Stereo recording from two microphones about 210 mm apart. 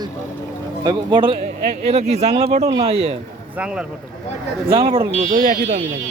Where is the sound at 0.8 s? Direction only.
20° right (ahead or behind).